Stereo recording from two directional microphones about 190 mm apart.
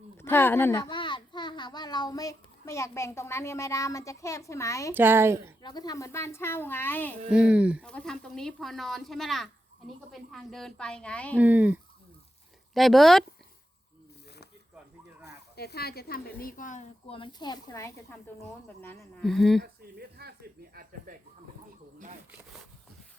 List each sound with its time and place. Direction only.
0.2 s a child's voice: 10° left (ahead or behind)
4.9 s speech: 10° right (ahead or behind)
5.6 s speech: 20° left (ahead or behind)
7.3 s speech: 5° right (ahead or behind)
11.3 s speech: 10° right (ahead or behind)
15.5 s a woman's voice: 55° left (ahead or behind)
17.1 s speech: 25° left (ahead or behind); by 19.6 s centre (ahead or behind)
19.6 s speech: 55° right (ahead or behind)
22.3 s speech: 10° right (ahead or behind)